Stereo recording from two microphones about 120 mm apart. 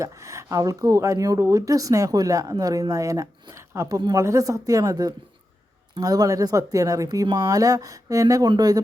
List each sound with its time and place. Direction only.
0.0 s speech: 25° right (ahead or behind)